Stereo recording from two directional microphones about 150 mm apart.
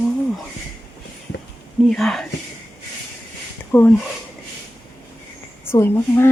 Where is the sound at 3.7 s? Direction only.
15° left (ahead or behind).